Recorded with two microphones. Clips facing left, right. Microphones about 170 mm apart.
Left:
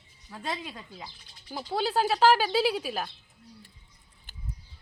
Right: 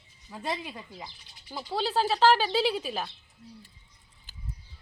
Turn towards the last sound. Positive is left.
turn(degrees=5)  # may be behind; listen again after turning